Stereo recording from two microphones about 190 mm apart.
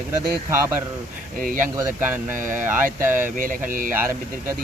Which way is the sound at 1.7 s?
15° right (ahead or behind).